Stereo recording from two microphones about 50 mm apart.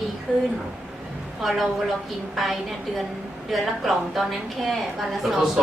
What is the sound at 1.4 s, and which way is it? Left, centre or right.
A woman's voice, centre.